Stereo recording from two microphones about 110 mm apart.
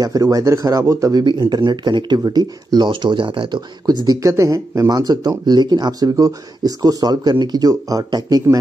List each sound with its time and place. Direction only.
0.0 s speech: 30° right (ahead or behind)
1.2 s speech: 45° right (ahead or behind)